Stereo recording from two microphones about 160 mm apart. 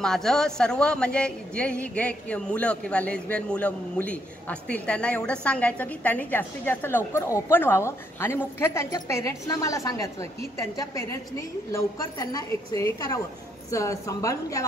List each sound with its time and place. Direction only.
0.0 s a woman's voice: 5° left (ahead or behind); by 14.6 s 20° left (ahead or behind)